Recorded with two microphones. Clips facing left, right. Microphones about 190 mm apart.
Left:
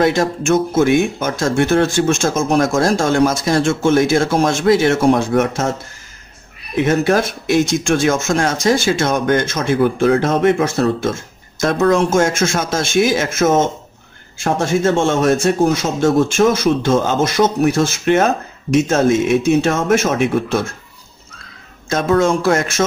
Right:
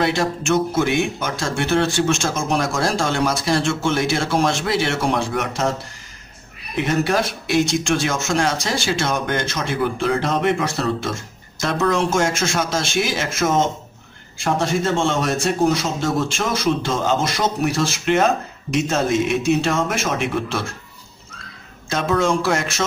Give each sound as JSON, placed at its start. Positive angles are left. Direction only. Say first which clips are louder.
{"t": 0.0, "sound": "a man's voice", "louder": "left 5 dB", "side_deg": 45}
{"t": 7.1, "sound": "a man's voice", "louder": "left 5 dB", "side_deg": 50}
{"t": 21.8, "sound": "a man's voice", "louder": "left 5 dB", "side_deg": 45}